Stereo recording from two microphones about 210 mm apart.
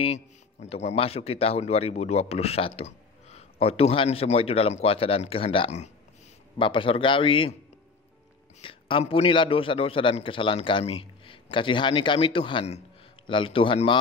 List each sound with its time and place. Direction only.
0.0 s speech: 30° left (ahead or behind)
8.5 s speech: 25° left (ahead or behind)